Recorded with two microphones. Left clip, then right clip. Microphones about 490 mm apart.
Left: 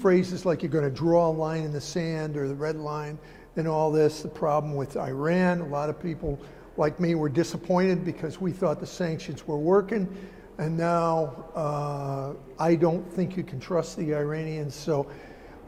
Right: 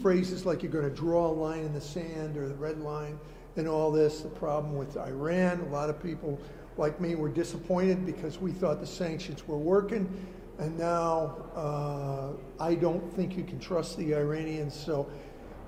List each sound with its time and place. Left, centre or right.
0.0 s mantra: left
2.1 s a man's voice: left
6.7 s mantra: left